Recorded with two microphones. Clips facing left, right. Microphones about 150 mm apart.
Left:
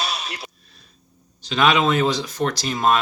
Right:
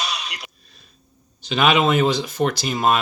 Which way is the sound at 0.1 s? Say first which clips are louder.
Left 1 dB; 30° left (ahead or behind).